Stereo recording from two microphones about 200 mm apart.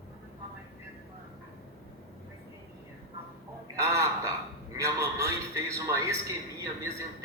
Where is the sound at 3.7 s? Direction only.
15° right (ahead or behind).